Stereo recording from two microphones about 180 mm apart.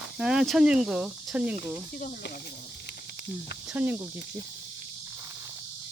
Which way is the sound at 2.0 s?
50° left (ahead or behind).